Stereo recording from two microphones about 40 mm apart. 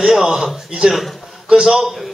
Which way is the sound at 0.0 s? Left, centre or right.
Centre.